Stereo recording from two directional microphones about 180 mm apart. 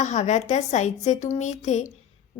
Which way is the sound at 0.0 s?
40° left (ahead or behind).